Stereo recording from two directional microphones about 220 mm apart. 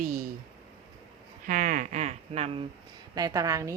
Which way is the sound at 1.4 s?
35° right (ahead or behind).